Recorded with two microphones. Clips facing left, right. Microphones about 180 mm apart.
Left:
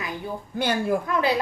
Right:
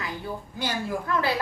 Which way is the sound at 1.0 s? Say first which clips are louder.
Left 2 dB; 20° left (ahead or behind).